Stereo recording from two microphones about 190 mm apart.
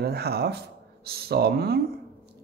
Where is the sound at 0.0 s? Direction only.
55° right (ahead or behind).